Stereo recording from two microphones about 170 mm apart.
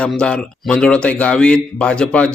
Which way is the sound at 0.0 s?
5° left (ahead or behind).